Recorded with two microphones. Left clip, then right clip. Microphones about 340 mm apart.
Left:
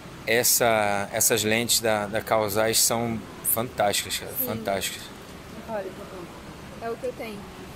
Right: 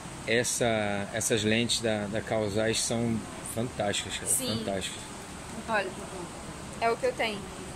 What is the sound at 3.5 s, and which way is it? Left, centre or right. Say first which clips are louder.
Speech: left 7 dB; left.